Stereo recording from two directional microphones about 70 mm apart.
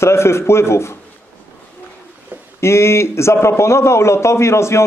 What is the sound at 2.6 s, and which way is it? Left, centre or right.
A man's voice, left.